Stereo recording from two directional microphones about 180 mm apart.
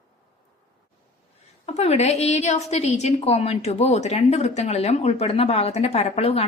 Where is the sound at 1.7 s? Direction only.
35° left (ahead or behind).